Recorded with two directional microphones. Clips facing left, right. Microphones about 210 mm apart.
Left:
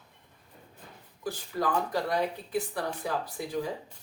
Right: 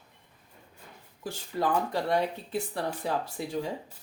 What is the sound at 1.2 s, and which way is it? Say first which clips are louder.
Speech: right 1 dB; 25° right (ahead or behind).